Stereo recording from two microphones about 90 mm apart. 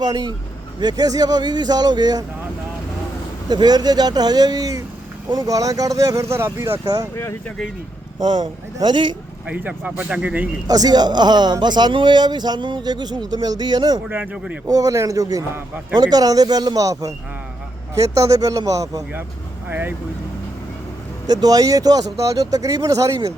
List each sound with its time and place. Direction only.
0.0 s speech: 50° right (ahead or behind)
3.5 s speech: 50° right (ahead or behind); by 6.7 s 30° right (ahead or behind)
6.8 s speech: 40° right (ahead or behind)
8.2 s speech: 55° right (ahead or behind)
9.5 s speech: 15° right (ahead or behind)
10.7 s speech: 45° right (ahead or behind)
14.7 s speech: 40° right (ahead or behind)
19.6 s speech: 20° right (ahead or behind)
21.2 s speech: 45° right (ahead or behind)